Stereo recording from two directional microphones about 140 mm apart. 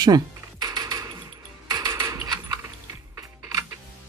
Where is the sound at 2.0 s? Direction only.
25° right (ahead or behind).